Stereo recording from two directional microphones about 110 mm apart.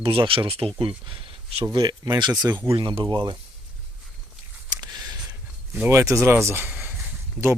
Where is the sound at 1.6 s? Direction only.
35° right (ahead or behind).